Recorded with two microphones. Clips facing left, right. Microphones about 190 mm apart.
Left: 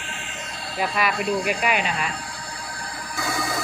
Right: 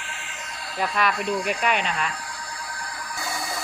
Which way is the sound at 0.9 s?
5° left (ahead or behind).